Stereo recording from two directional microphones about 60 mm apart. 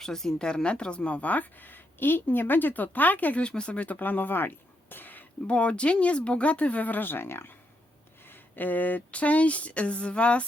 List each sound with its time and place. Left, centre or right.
0.0 s speech: centre; by 5.2 s left
5.5 s speech: centre; by 7.5 s left
8.5 s speech: left